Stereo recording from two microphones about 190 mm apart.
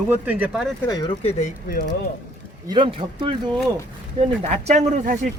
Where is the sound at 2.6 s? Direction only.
25° right (ahead or behind).